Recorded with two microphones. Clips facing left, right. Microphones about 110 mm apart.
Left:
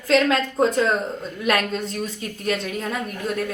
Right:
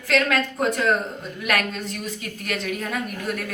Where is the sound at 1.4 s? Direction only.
30° left (ahead or behind).